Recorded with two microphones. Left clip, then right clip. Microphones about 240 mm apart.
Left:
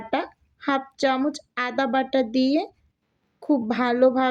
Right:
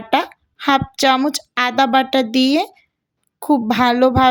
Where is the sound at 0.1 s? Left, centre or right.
Right.